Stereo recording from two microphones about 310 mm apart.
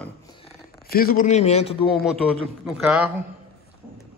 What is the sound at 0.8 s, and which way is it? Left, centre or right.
A man's voice, left.